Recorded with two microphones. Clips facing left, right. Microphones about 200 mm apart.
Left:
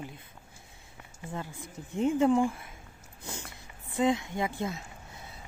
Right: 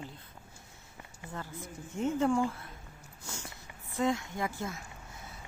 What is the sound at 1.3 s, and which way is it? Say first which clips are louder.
A woman's voice: left 2 dB; 15° left (ahead or behind).